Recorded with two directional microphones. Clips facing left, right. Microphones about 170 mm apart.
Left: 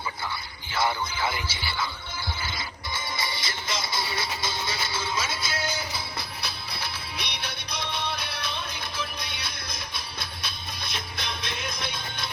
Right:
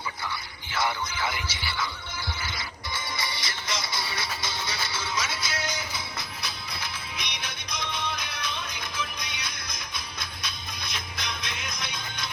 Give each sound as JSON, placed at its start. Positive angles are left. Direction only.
{"t": 0.7, "sound": "music", "side_deg": 30}